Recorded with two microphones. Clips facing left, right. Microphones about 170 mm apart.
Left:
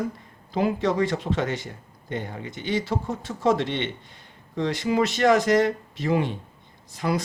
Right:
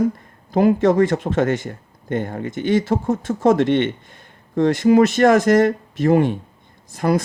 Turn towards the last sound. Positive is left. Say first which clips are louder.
# right 7 dB
turn(degrees=-45)  # may be behind; listen again after turning